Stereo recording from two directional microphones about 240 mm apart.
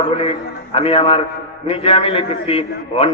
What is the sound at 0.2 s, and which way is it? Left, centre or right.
A man's voice, left.